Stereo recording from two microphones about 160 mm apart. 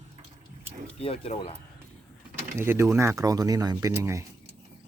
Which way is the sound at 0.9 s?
35° left (ahead or behind).